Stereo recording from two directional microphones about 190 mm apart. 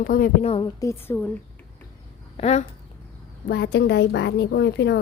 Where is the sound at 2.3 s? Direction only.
35° left (ahead or behind).